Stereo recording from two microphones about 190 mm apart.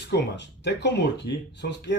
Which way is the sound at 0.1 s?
65° left (ahead or behind).